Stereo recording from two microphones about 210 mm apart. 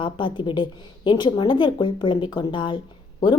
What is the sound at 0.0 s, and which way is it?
A woman's voice, 25° left (ahead or behind).